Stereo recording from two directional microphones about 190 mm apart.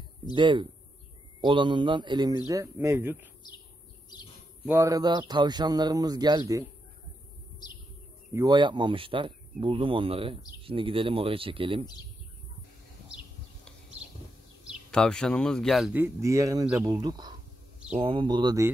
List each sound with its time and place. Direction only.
0.3 s speech: 25° right (ahead or behind)
4.6 s speech: 15° right (ahead or behind)
8.3 s speech: 20° right (ahead or behind)
13.7 s a sound: 5° right (ahead or behind)
14.6 s speech: centre (ahead or behind); by 18.7 s 20° right (ahead or behind)